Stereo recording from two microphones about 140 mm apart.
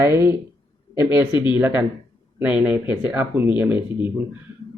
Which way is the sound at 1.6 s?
10° right (ahead or behind).